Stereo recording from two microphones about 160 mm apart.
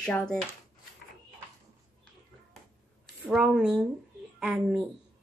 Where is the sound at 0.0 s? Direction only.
5° left (ahead or behind).